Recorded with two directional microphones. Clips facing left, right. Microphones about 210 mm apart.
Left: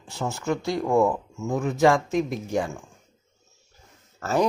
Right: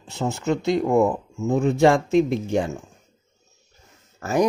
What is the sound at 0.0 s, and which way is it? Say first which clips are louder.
Speech: right 4 dB; 25° right (ahead or behind).